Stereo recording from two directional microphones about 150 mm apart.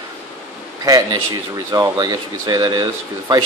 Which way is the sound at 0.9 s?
25° right (ahead or behind).